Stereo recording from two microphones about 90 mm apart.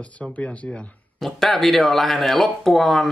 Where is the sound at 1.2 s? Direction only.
Centre (ahead or behind).